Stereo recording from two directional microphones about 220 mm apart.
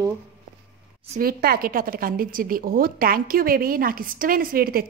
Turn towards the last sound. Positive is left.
turn(degrees=-45)  # may be behind; listen again after turning